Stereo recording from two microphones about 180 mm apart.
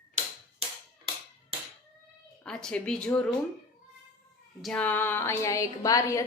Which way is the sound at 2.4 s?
5° left (ahead or behind).